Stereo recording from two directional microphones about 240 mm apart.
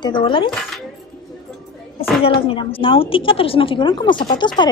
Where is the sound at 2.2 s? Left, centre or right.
Left.